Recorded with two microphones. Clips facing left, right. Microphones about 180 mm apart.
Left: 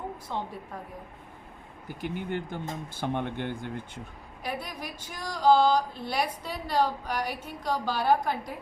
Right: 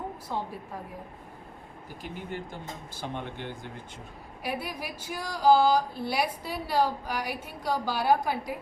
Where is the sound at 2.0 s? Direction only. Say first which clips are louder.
Left 5 dB; 60° left (ahead or behind).